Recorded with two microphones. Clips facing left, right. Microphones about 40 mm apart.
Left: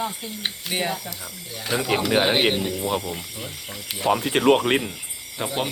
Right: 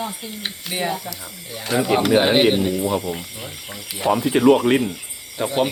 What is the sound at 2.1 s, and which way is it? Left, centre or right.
Speech, centre.